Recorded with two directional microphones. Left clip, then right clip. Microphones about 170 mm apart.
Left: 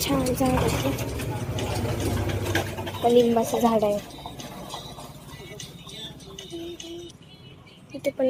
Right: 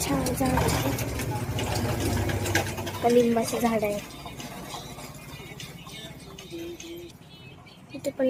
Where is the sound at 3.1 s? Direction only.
Centre (ahead or behind).